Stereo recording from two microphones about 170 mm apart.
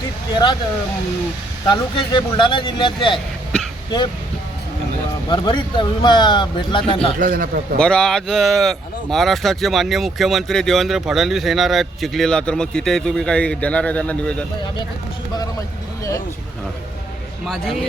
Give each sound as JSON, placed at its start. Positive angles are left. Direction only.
{"t": 1.6, "sound": "speech", "side_deg": 25}
{"t": 3.5, "sound": "a sound", "side_deg": 5}
{"t": 5.3, "sound": "speech", "side_deg": 30}
{"t": 7.2, "sound": "a man's voice", "side_deg": -55}
{"t": 7.8, "sound": "speech", "side_deg": 5}
{"t": 17.4, "sound": "speech", "side_deg": 0}